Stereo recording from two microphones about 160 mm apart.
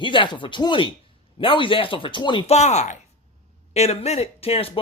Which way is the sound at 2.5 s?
45° left (ahead or behind).